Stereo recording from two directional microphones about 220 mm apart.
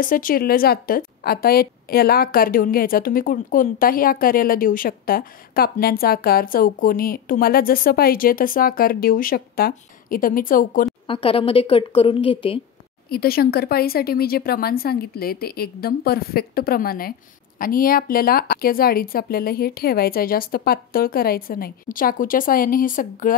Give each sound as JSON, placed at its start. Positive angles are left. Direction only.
{"t": 0.0, "sound": "a woman's voice", "side_deg": 40}
{"t": 11.1, "sound": "a woman's voice", "side_deg": 25}
{"t": 13.1, "sound": "a woman's voice", "side_deg": 45}